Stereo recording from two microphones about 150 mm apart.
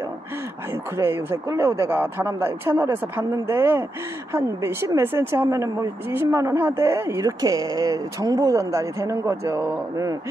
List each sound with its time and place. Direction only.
0.9 s speech: 15° right (ahead or behind)